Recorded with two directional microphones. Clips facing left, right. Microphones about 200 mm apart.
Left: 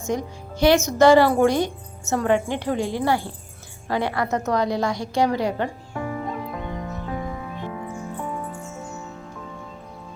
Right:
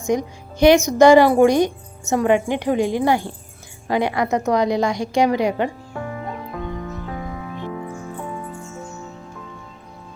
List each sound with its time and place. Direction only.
0.1 s speech: 15° right (ahead or behind)